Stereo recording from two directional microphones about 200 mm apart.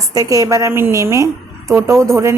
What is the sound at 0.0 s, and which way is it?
Speech, 15° right (ahead or behind).